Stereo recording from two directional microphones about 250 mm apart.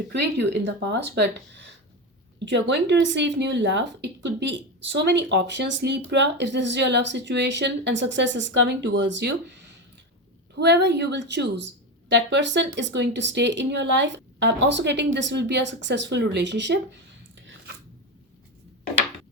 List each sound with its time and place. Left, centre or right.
0.1 s a woman's voice: right
10.6 s a woman's voice: right